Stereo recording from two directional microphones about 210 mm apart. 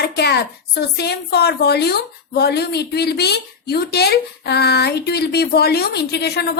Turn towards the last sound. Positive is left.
turn(degrees=50)  # may be behind; listen again after turning